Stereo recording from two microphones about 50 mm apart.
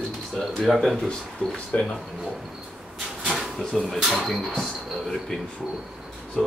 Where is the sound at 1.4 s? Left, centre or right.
Centre.